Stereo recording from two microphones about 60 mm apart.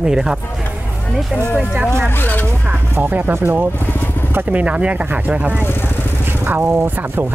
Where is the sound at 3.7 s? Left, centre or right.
Left.